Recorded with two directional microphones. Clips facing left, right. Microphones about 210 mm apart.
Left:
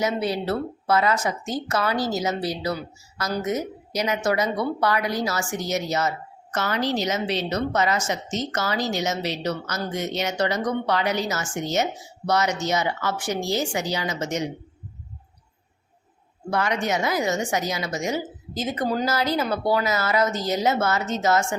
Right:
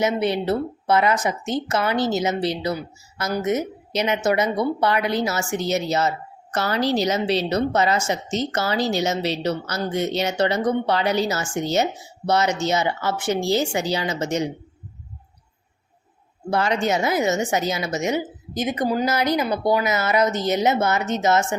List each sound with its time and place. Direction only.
0.0 s a woman's voice: 20° right (ahead or behind)
16.5 s a woman's voice: 30° right (ahead or behind)